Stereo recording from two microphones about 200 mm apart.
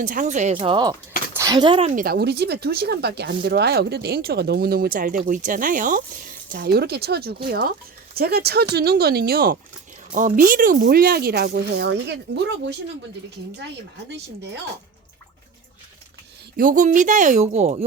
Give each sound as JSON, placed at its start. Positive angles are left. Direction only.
{"t": 0.0, "sound": "speech", "side_deg": -40}
{"t": 2.0, "sound": "speech", "side_deg": -55}
{"t": 6.6, "sound": "speech", "side_deg": -55}
{"t": 14.1, "sound": "speech", "side_deg": -60}
{"t": 16.6, "sound": "speech", "side_deg": -40}